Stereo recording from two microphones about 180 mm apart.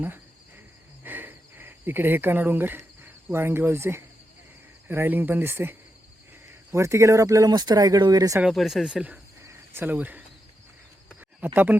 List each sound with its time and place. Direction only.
1.0 s a sound: 10° right (ahead or behind)
4.9 s speech: 10° right (ahead or behind)
8.4 s speech: centre (ahead or behind)
9.4 s cricket: 15° right (ahead or behind)
11.3 s speech: 10° right (ahead or behind)